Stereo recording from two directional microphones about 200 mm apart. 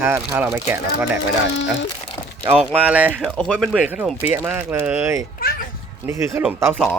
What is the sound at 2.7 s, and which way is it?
Speech, 5° right (ahead or behind).